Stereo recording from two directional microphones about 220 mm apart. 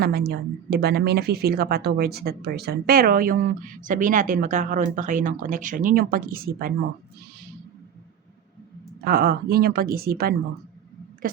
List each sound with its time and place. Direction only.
0.0 s a woman's voice: 45° right (ahead or behind)
9.0 s speech: 45° right (ahead or behind)